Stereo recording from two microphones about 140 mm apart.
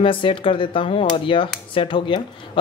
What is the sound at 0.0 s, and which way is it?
Speech, 40° left (ahead or behind).